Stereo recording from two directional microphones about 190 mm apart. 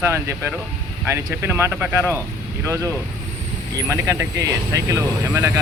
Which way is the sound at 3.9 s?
15° right (ahead or behind).